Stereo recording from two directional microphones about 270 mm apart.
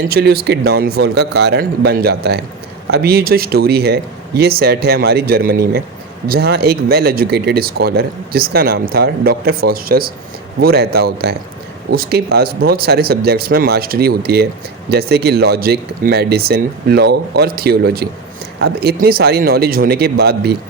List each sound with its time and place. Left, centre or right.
0.1 s speech: right